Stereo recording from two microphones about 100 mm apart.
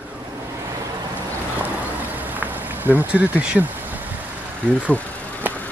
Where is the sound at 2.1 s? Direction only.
20° right (ahead or behind).